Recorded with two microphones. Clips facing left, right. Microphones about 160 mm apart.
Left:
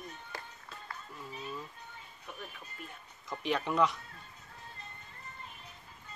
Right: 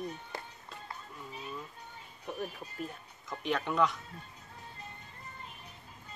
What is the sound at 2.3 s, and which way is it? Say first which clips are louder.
Music: right 8 dB; 35° right (ahead or behind).